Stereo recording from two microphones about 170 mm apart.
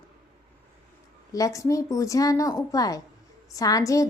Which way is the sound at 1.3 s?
20° left (ahead or behind).